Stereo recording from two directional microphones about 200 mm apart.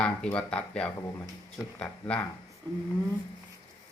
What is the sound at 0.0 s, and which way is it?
Speech, 5° left (ahead or behind).